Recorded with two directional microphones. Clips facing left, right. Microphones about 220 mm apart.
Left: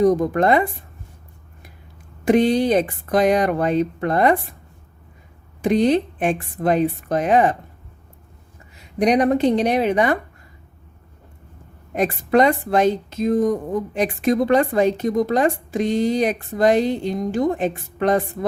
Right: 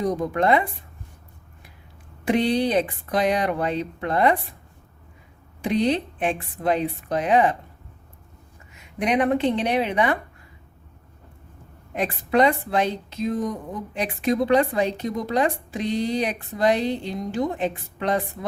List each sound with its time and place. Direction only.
0.0 s speech: 45° left (ahead or behind)
2.2 s speech: 45° left (ahead or behind)
5.6 s speech: 45° left (ahead or behind)
8.7 s speech: 35° left (ahead or behind)
11.9 s speech: 45° left (ahead or behind)